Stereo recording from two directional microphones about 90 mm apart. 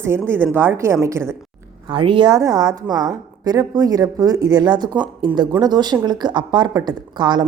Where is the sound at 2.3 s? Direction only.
40° right (ahead or behind).